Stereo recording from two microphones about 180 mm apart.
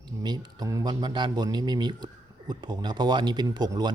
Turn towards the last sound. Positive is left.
turn(degrees=-25)  # may be behind; listen again after turning